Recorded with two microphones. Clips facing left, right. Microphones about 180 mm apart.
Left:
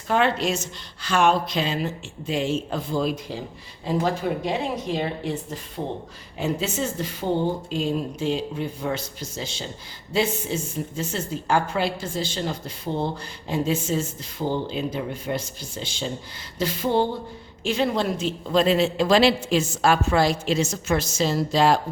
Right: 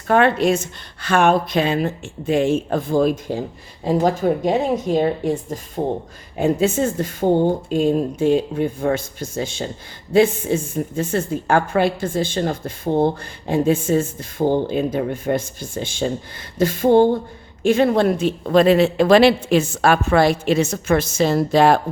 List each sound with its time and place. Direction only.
0.1 s a woman's voice: 55° right (ahead or behind)